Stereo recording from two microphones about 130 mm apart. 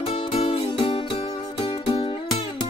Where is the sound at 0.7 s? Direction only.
35° left (ahead or behind).